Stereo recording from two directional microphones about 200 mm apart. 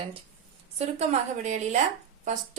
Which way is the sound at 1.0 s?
35° right (ahead or behind).